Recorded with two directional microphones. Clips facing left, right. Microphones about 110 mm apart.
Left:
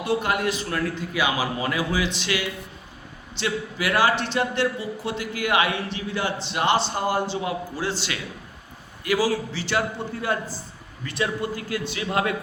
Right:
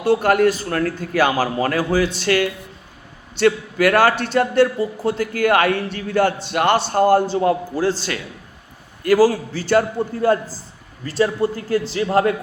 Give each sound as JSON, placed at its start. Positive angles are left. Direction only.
{"t": 0.0, "sound": "a man's voice", "side_deg": -50}